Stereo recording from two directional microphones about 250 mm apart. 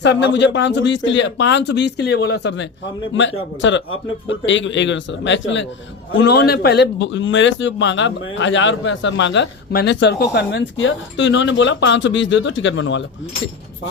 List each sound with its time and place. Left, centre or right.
0.0 s a man's voice: left